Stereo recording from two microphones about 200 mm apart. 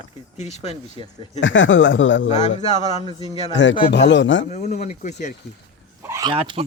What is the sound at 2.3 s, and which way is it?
Speech, 35° left (ahead or behind).